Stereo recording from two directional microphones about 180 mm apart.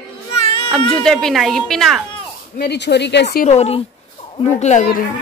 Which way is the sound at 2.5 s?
70° left (ahead or behind).